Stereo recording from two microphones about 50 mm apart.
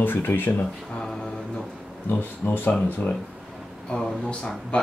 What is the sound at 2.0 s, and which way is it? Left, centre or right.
Speech, left.